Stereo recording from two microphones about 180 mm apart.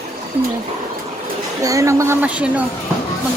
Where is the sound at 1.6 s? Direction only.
15° right (ahead or behind).